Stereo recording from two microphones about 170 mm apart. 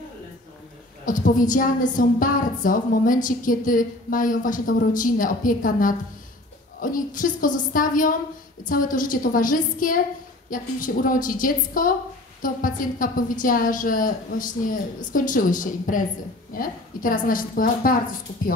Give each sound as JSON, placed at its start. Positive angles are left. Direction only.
{"t": 1.0, "sound": "a woman's voice", "side_deg": 50}